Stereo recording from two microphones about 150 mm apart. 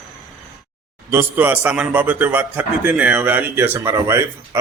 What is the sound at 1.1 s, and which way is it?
A man's voice, 15° right (ahead or behind).